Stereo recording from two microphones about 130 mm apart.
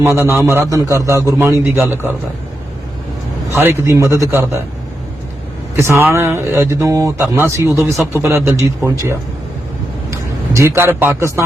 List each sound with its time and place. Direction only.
0.0 s a man's voice: 20° right (ahead or behind)
3.5 s a man's voice: 20° right (ahead or behind)
5.8 s a man's voice: 20° right (ahead or behind)